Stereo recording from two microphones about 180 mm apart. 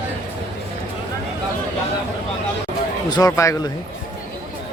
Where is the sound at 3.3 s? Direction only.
15° left (ahead or behind).